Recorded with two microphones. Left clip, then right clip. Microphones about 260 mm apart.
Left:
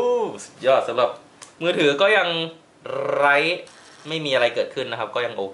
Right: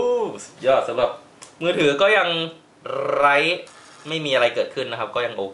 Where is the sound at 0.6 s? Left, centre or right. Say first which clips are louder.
Even; centre.